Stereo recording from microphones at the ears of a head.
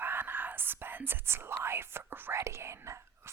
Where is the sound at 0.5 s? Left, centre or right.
Right.